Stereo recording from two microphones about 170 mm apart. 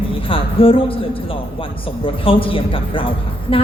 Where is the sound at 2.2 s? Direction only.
30° left (ahead or behind).